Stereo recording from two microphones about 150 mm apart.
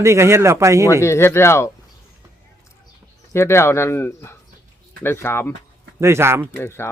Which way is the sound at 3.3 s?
15° left (ahead or behind).